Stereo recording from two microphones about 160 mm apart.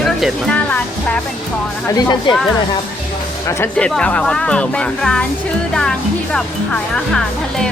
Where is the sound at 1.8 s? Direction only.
25° left (ahead or behind).